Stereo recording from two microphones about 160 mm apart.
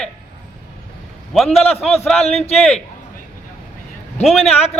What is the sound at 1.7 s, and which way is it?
Speech, 40° left (ahead or behind).